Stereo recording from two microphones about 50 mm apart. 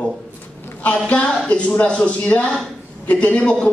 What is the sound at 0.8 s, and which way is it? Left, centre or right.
A woman's voice, left.